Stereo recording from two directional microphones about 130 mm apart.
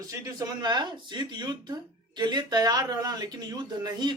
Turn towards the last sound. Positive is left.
turn(degrees=-30)  # may be behind; listen again after turning